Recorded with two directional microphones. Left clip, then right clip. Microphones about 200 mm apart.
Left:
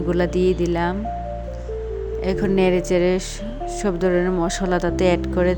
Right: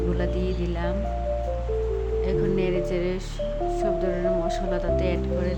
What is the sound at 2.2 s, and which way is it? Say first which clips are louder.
Speech: left 7 dB; 45° left (ahead or behind).